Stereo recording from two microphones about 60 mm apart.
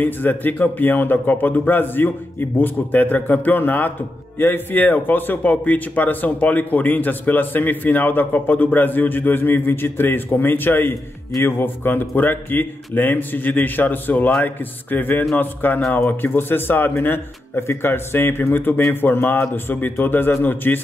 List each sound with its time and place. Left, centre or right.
0.0 s speech: left